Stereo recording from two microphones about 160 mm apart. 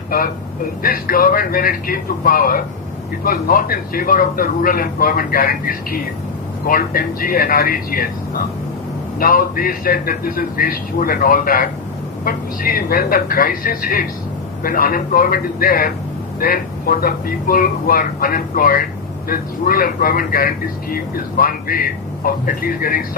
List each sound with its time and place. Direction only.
0.1 s speech: 65° left (ahead or behind)